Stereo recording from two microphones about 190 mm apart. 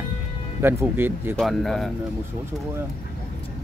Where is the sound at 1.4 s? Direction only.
Centre (ahead or behind).